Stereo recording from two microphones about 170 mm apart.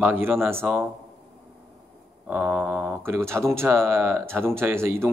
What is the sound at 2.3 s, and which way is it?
Speech, 10° right (ahead or behind).